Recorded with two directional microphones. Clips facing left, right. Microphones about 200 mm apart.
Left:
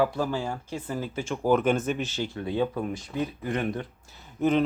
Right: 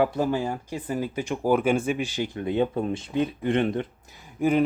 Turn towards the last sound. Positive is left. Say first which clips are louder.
# right 2 dB
turn(degrees=-10)  # may be behind; listen again after turning